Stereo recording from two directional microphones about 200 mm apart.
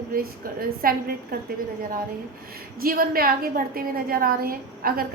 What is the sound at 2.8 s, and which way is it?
A woman's voice, 45° right (ahead or behind).